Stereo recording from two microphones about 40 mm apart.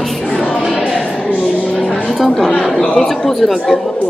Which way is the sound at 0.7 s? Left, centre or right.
Centre.